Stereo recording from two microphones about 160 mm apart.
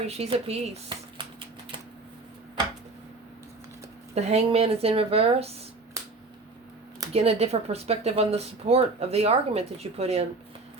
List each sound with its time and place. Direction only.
0.1 s speech: 40° right (ahead or behind)
0.9 s a sound: 30° right (ahead or behind)
4.1 s speech: 40° right (ahead or behind)
7.1 s speech: 40° right (ahead or behind)